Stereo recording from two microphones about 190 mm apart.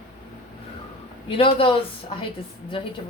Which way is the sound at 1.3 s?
30° left (ahead or behind).